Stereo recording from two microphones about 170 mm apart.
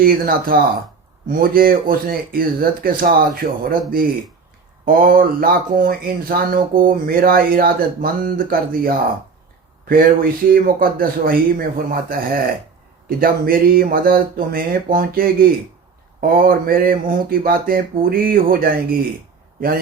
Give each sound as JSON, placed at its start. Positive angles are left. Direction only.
{"t": 0.0, "sound": "a man's voice", "side_deg": -55}